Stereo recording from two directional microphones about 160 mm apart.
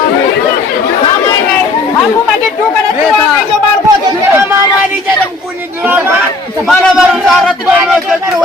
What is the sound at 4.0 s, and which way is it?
Chatter, 15° right (ahead or behind).